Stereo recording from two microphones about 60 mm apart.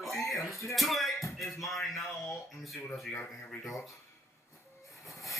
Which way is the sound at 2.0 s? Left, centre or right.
Left.